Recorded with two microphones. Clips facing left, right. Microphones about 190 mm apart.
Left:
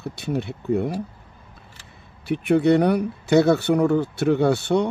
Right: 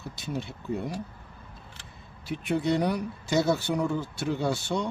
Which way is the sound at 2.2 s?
65° left (ahead or behind).